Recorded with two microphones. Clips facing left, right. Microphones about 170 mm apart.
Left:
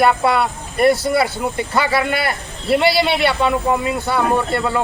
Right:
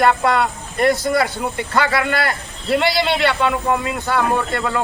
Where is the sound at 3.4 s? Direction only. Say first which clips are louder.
Left 2 dB; 20° left (ahead or behind).